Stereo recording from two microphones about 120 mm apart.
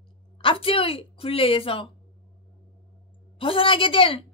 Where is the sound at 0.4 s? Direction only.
50° left (ahead or behind).